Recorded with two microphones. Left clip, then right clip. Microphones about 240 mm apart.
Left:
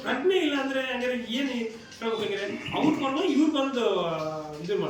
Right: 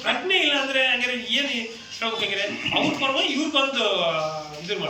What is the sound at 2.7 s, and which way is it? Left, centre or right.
Speech, right.